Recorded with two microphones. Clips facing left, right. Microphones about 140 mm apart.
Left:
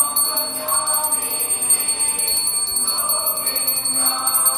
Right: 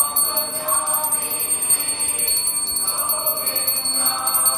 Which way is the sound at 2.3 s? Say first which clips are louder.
Left 1 dB; 90° left.